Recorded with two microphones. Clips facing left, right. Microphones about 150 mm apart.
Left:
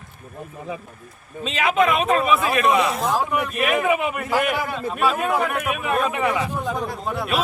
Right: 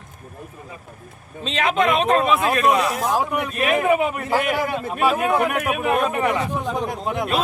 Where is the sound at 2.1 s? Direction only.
30° right (ahead or behind).